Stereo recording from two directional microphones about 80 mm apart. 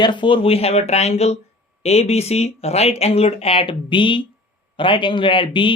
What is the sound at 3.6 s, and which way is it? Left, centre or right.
Speech, left.